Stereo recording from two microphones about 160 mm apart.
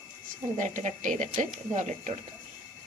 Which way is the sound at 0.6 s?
50° right (ahead or behind).